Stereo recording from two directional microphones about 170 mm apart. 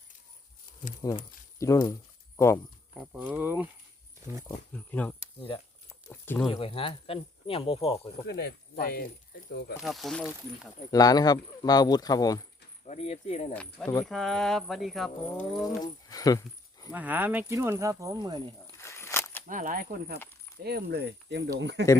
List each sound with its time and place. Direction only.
1.0 s speech: 20° left (ahead or behind)
3.0 s speech: 5° right (ahead or behind)
4.4 s speech: 10° left (ahead or behind)
6.5 s speech: 35° left (ahead or behind)
8.3 s speech: 75° left (ahead or behind)
9.8 s speech: centre (ahead or behind)
10.9 s speech: 20° left (ahead or behind)
12.8 s speech: 40° left (ahead or behind)
14.0 s speech: centre (ahead or behind)
15.6 s speech: 20° left (ahead or behind)
16.9 s speech: 10° right (ahead or behind); by 18.5 s 25° right (ahead or behind)
18.8 s a sound: 15° left (ahead or behind)
19.5 s speech: 50° right (ahead or behind)
20.7 s speech: 70° right (ahead or behind); by 21.8 s 90° right